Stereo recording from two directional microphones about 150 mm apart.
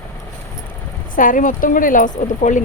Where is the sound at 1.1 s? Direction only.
65° left (ahead or behind).